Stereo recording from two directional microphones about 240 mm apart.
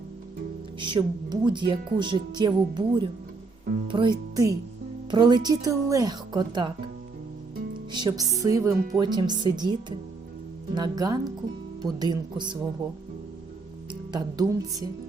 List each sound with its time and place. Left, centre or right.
0.8 s a woman's voice: centre
7.9 s a woman's voice: centre
10.8 s a woman's voice: centre
14.1 s a woman's voice: centre